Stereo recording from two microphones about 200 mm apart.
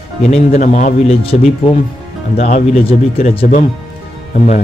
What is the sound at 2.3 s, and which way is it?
A man's voice, 35° left (ahead or behind).